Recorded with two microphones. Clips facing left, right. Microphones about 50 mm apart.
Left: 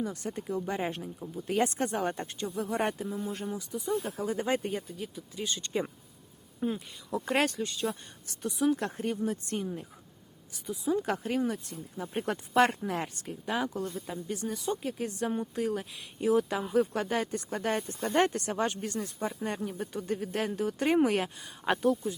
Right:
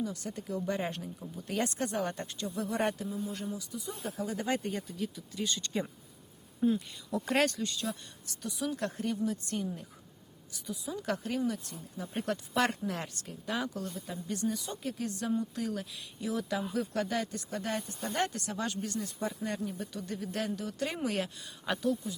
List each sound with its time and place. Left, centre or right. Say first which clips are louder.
0.0 s speech: left 2 dB; left; by 3.1 s centre
3.2 s speech: left 2 dB; left
4.8 s speech: right 2 dB; centre
8.4 s speech: left 6 dB; left